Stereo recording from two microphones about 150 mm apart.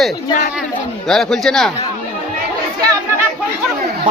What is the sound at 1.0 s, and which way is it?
Speech, 5° left (ahead or behind).